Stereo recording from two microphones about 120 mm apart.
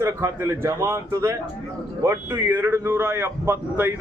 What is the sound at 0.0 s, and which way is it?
Speech, 25° right (ahead or behind).